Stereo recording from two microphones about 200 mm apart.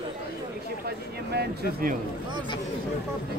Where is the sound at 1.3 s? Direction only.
55° right (ahead or behind).